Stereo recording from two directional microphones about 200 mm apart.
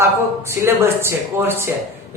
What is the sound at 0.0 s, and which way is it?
A man's voice, 10° right (ahead or behind).